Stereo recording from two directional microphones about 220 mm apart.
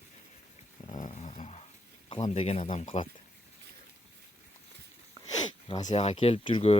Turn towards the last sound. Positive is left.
turn(degrees=25)  # may be behind; listen again after turning